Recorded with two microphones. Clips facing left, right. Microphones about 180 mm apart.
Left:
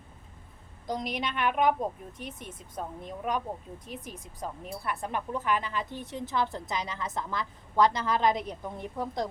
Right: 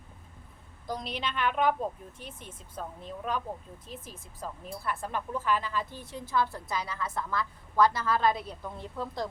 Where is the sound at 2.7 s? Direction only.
15° left (ahead or behind).